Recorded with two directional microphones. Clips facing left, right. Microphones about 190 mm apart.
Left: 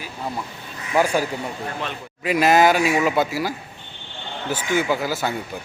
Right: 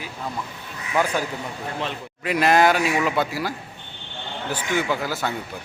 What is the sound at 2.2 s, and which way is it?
A man's voice, 5° left (ahead or behind).